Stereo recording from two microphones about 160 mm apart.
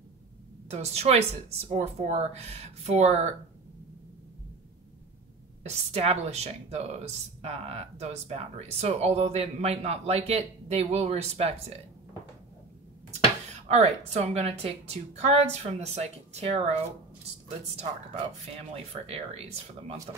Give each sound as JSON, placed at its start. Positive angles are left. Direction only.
{"t": 0.7, "sound": "speech", "side_deg": -40}
{"t": 5.6, "sound": "speech", "side_deg": -40}
{"t": 13.7, "sound": "speech", "side_deg": -40}